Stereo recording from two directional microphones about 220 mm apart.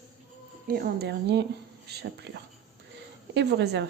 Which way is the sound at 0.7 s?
50° right (ahead or behind).